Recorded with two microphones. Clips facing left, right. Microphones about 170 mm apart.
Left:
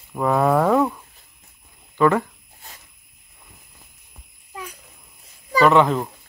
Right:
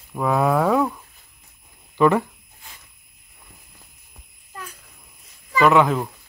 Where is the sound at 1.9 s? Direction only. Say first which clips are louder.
Even; 15° right (ahead or behind).